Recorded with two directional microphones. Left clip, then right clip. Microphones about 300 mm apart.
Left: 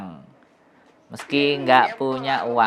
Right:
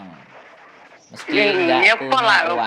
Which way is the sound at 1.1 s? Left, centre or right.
Centre.